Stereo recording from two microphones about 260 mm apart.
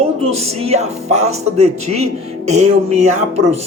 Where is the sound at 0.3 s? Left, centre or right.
Right.